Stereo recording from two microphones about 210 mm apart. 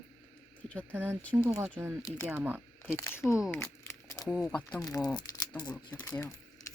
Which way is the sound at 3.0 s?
15° left (ahead or behind).